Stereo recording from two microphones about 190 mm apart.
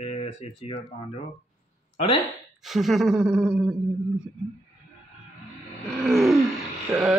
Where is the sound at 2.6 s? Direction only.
Centre (ahead or behind).